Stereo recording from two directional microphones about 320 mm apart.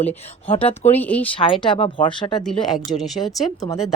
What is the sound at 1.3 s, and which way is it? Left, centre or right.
Speech, centre.